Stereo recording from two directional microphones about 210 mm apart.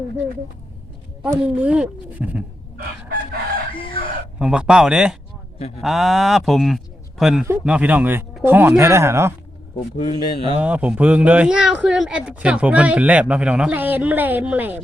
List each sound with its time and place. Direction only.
1.2 s speech: 5° right (ahead or behind)
3.8 s chicken: 25° left (ahead or behind)
4.4 s speech: 5° right (ahead or behind)
10.0 s speech: 30° left (ahead or behind)
10.6 s speech: 5° right (ahead or behind)